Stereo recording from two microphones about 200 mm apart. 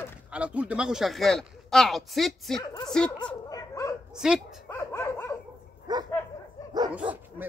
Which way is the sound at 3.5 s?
15° left (ahead or behind).